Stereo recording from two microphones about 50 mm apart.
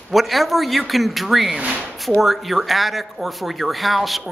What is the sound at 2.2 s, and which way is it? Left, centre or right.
Speech, centre.